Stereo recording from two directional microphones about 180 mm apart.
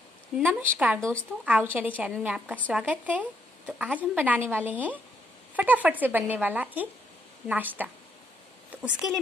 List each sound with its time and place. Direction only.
0.4 s a woman's voice: 10° right (ahead or behind)